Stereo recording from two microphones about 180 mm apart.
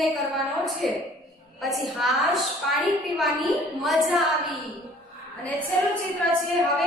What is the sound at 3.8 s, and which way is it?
Speech, centre (ahead or behind).